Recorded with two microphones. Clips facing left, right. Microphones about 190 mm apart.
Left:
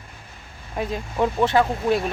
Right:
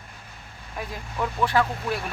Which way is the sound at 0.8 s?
25° left (ahead or behind).